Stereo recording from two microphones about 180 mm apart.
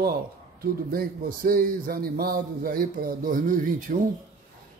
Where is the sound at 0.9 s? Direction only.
55° right (ahead or behind).